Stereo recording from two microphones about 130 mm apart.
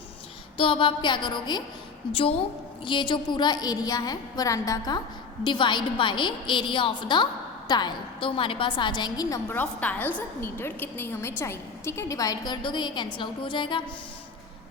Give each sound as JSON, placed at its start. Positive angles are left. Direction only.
{"t": 0.5, "sound": "a woman's voice", "side_deg": 40}
{"t": 5.4, "sound": "a woman's voice", "side_deg": 35}
{"t": 9.5, "sound": "a woman's voice", "side_deg": 15}